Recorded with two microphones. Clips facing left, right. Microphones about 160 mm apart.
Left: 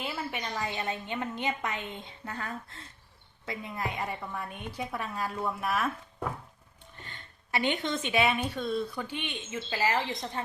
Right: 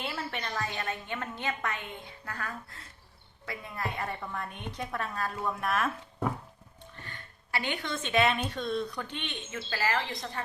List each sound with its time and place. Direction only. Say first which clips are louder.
0.0 s a woman's voice: left 1 dB; 10° left (ahead or behind)
7.0 s a woman's voice: left 1 dB; 20° left (ahead or behind)